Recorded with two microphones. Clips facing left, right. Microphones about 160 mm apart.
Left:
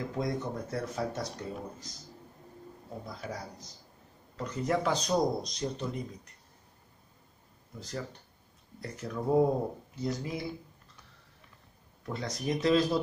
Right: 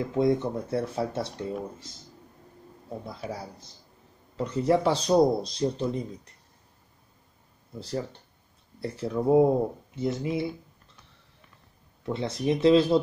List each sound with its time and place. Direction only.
0.1 s speech: 25° right (ahead or behind)
3.1 s speech: 30° right (ahead or behind)
7.8 s speech: 30° right (ahead or behind)
12.1 s speech: 25° right (ahead or behind)